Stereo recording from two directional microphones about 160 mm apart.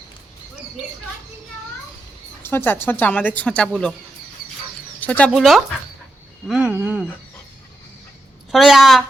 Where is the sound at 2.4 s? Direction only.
15° left (ahead or behind).